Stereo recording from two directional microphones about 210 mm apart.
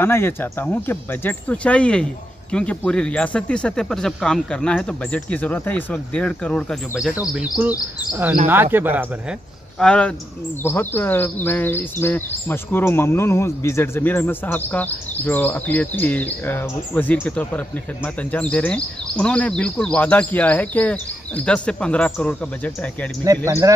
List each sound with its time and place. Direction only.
0.0 s speech: 10° left (ahead or behind); by 9.0 s 10° right (ahead or behind)
9.8 s speech: 5° left (ahead or behind)
23.2 s speech: 15° right (ahead or behind)